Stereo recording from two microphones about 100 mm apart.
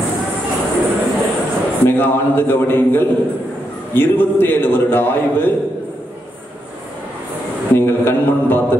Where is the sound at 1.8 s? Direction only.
20° left (ahead or behind).